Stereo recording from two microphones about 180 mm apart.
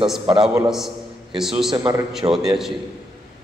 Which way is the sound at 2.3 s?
Centre (ahead or behind).